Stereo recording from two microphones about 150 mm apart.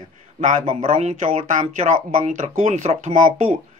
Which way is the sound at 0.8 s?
45° right (ahead or behind).